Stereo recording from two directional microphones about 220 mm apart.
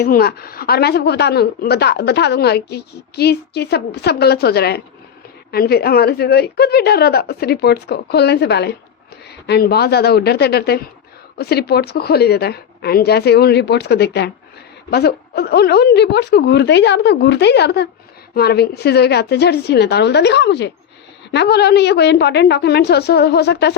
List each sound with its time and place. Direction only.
0.0 s a woman's voice: 45° left (ahead or behind)